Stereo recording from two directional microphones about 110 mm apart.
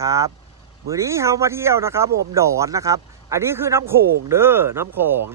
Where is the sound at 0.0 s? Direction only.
30° right (ahead or behind).